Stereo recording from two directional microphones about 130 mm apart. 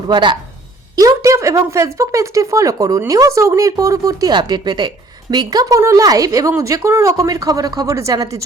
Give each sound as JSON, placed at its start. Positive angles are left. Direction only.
{"t": 0.1, "sound": "speech", "side_deg": -35}
{"t": 0.9, "sound": "speech", "side_deg": -25}